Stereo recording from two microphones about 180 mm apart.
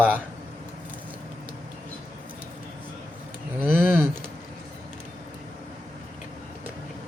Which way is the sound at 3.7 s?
15° right (ahead or behind).